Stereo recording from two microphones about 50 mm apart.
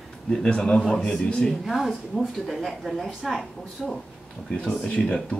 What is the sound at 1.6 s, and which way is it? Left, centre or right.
Speech, centre.